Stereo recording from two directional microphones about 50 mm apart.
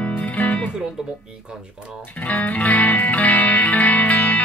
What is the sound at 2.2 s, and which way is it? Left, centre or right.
Music, left.